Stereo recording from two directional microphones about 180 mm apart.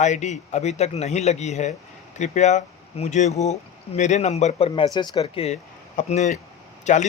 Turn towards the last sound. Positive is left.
turn(degrees=40)  # may be behind; listen again after turning